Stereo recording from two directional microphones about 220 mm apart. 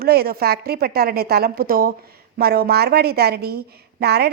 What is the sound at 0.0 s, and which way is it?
A woman's voice, 45° right (ahead or behind).